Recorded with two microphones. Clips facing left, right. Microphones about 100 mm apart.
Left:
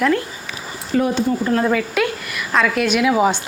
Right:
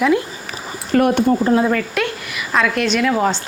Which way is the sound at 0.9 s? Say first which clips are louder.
Right 4 dB; 60° right (ahead or behind).